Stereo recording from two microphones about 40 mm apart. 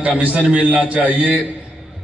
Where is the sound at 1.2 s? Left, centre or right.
Left.